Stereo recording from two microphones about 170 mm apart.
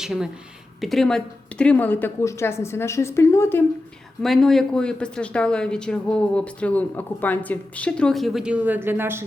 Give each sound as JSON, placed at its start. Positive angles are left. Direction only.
{"t": 0.0, "sound": "a woman's voice", "side_deg": -5}
{"t": 4.2, "sound": "speech", "side_deg": 0}